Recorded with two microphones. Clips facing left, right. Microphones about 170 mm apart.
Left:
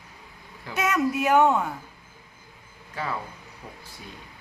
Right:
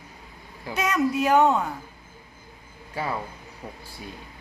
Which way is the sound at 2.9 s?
15° right (ahead or behind).